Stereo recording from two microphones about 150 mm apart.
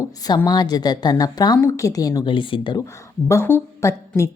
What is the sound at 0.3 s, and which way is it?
A woman's voice, 30° left (ahead or behind).